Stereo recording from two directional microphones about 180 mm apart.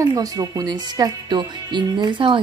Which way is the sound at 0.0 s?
20° right (ahead or behind).